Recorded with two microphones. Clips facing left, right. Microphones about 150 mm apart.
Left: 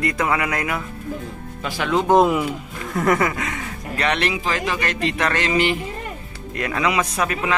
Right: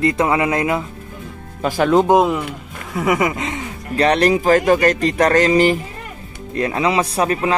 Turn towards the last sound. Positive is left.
turn(degrees=-35)  # may be behind; listen again after turning